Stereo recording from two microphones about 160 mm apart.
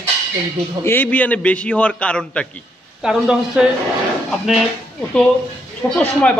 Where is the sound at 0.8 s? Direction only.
15° left (ahead or behind); by 3.7 s 5° right (ahead or behind).